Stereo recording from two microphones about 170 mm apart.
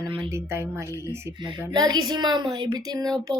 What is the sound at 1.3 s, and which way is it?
Speech, 25° right (ahead or behind).